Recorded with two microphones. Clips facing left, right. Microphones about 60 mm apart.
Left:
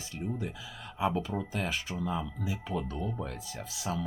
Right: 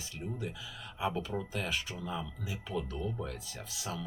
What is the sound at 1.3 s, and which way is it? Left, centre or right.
Speech, left.